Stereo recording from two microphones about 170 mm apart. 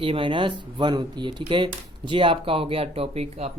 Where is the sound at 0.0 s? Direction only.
30° right (ahead or behind).